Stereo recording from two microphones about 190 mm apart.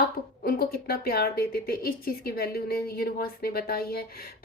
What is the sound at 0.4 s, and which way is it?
Speech, 50° left (ahead or behind).